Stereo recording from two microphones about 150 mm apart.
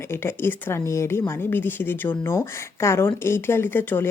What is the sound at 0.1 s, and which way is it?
Speech, 15° left (ahead or behind).